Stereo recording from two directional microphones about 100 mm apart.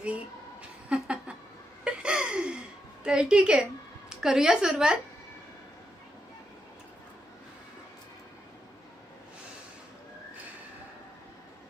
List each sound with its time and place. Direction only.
0.9 s a sound: 10° right (ahead or behind)
1.8 s gasp: 10° right (ahead or behind)
3.0 s a woman's voice: 10° right (ahead or behind)